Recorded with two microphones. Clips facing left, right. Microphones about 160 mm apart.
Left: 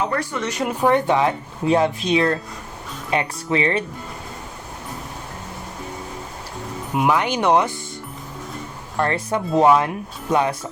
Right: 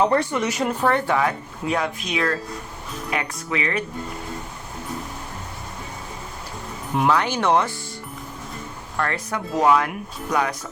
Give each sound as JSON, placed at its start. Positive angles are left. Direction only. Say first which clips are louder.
{"t": 0.3, "sound": "speech", "louder": "right 2 dB", "side_deg": -10}
{"t": 0.6, "sound": "speech", "louder": "left 5 dB", "side_deg": 10}
{"t": 6.9, "sound": "speech", "louder": "left 1 dB", "side_deg": 15}
{"t": 9.0, "sound": "speech", "louder": "left 4 dB", "side_deg": 25}